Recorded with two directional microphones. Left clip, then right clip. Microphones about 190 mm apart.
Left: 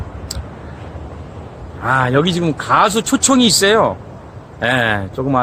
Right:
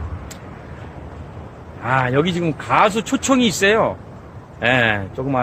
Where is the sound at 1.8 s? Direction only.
15° left (ahead or behind).